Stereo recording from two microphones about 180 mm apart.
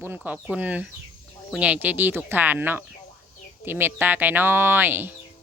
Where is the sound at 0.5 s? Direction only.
10° right (ahead or behind).